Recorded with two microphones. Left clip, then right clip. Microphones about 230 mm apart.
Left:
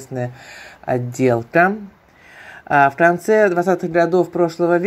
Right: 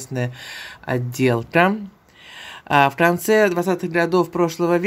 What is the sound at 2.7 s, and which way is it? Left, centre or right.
Speech, right.